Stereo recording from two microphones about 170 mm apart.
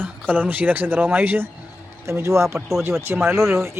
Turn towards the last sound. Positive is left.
turn(degrees=-15)  # may be behind; listen again after turning